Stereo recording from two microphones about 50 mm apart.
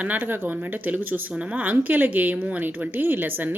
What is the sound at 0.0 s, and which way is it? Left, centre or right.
A woman's voice, right.